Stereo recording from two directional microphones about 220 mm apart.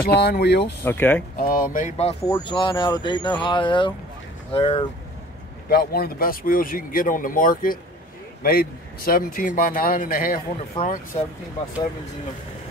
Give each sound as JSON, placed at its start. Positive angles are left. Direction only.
{"t": 0.0, "sound": "speech", "side_deg": 45}
{"t": 0.8, "sound": "speech", "side_deg": 10}
{"t": 1.4, "sound": "a man's voice", "side_deg": 40}
{"t": 2.4, "sound": "speech", "side_deg": 20}
{"t": 5.7, "sound": "a man's voice", "side_deg": 45}